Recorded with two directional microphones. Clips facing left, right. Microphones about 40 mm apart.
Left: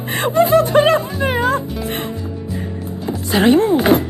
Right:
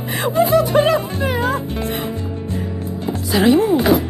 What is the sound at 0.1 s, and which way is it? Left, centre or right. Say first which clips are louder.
Music: left 2 dB; left.